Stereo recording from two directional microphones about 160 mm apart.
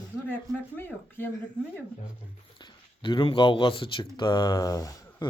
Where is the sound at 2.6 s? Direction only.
30° left (ahead or behind).